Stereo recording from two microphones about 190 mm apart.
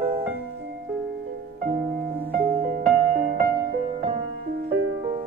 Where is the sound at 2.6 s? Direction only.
50° right (ahead or behind).